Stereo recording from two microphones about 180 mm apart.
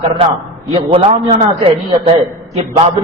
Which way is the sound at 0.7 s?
30° right (ahead or behind).